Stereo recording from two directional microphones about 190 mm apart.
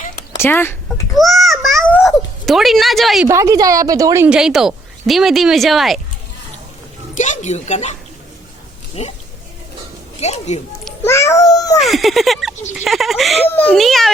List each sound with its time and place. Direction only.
0.3 s speech: 10° left (ahead or behind)
1.1 s a sound: centre (ahead or behind)
2.0 s speech: centre (ahead or behind)
3.2 s a woman's voice: 15° right (ahead or behind)
4.3 s speech: 5° right (ahead or behind)
7.1 s a woman's voice: 40° left (ahead or behind)
9.0 s a woman's voice: 35° left (ahead or behind)
10.2 s a woman's voice: 35° left (ahead or behind)
11.0 s a child's voice: 15° left (ahead or behind)
11.8 s speech: centre (ahead or behind)